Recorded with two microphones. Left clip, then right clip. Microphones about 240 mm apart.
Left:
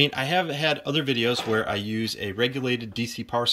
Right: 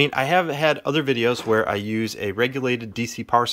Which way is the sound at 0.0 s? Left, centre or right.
Centre.